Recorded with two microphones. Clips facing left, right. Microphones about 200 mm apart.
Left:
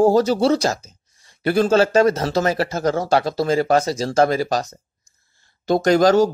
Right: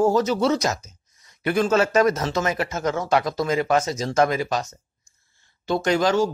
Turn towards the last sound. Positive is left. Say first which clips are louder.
# left 6 dB
turn(degrees=40)  # may be behind; listen again after turning